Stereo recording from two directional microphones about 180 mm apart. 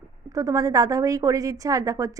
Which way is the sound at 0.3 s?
20° right (ahead or behind).